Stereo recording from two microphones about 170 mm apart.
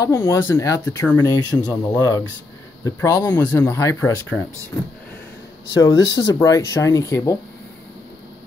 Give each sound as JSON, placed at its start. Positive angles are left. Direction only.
{"t": 0.0, "sound": "speech", "side_deg": 15}
{"t": 5.7, "sound": "speech", "side_deg": 20}